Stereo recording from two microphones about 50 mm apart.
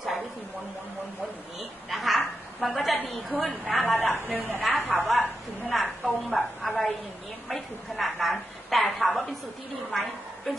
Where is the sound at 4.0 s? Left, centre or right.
Left.